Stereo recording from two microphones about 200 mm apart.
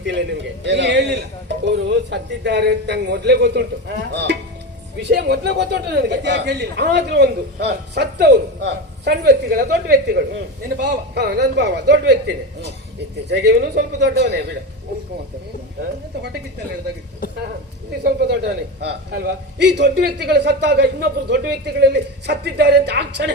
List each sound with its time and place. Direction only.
0.0 s a man's voice: 65° right (ahead or behind)
13.2 s a man's voice: 55° right (ahead or behind)
18.0 s a man's voice: 55° right (ahead or behind)